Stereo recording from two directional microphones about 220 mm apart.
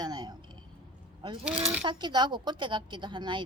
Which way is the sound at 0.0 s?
20° right (ahead or behind).